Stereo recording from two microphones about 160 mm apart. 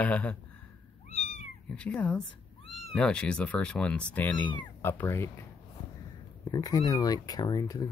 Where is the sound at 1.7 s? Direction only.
5° left (ahead or behind).